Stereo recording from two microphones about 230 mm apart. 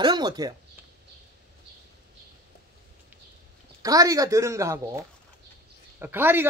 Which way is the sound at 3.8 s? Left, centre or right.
Centre.